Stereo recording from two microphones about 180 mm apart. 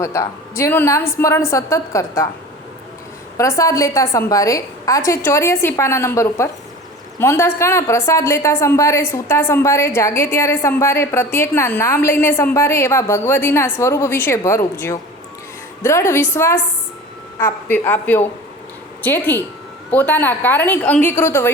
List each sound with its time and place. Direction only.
0.0 s a woman's voice: 15° left (ahead or behind)
3.3 s a woman's voice: 15° left (ahead or behind)